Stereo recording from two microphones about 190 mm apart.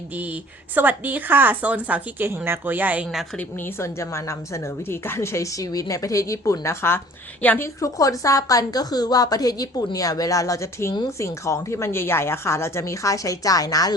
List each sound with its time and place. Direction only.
0.1 s a woman's voice: 10° right (ahead or behind)
3.3 s a woman's voice: 10° left (ahead or behind)